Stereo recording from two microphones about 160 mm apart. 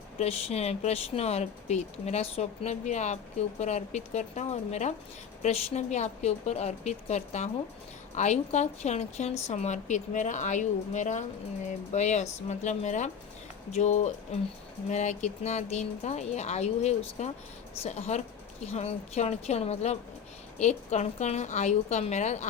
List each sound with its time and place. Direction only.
0.2 s speech: 40° left (ahead or behind)